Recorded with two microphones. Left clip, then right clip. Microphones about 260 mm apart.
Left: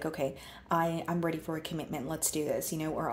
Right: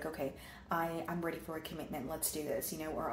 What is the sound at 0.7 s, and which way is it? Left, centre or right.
Speech, left.